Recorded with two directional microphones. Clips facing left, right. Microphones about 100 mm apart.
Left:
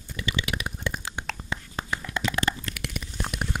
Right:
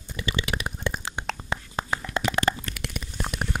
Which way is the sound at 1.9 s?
30° right (ahead or behind).